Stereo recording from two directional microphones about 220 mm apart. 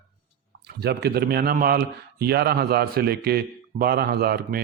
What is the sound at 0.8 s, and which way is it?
A man's voice, 50° right (ahead or behind).